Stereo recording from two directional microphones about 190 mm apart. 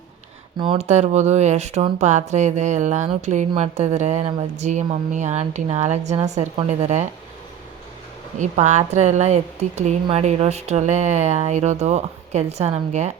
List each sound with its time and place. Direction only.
0.6 s a woman's voice: 30° right (ahead or behind)
8.4 s a woman's voice: 40° right (ahead or behind)